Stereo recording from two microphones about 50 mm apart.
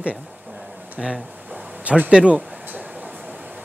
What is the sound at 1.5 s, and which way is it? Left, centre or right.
Speech, right.